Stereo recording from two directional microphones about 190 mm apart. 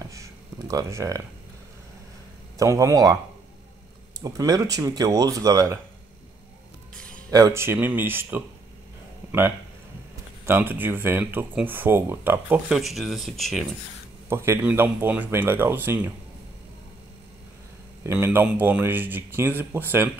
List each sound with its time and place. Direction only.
0.1 s a sound: 15° right (ahead or behind)
2.6 s speech: 15° right (ahead or behind)
4.2 s speech: 20° right (ahead or behind)
7.0 s music: 5° left (ahead or behind)
7.2 s speech: 15° right (ahead or behind)
10.4 s speech: 10° right (ahead or behind)
14.3 s speech: 15° right (ahead or behind)
18.0 s speech: 10° right (ahead or behind)